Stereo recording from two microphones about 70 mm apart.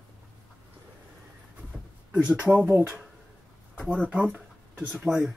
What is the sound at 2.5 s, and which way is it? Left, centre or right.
Speech, centre.